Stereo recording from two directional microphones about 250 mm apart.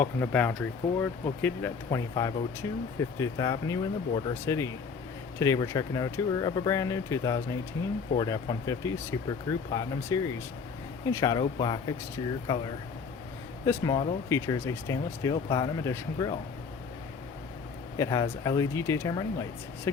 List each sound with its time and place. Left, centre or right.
0.0 s speech: centre
13.7 s speech: centre
17.9 s speech: centre